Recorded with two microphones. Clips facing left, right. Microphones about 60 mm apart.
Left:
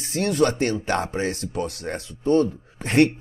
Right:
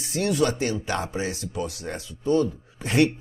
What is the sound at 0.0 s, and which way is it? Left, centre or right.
Speech, left.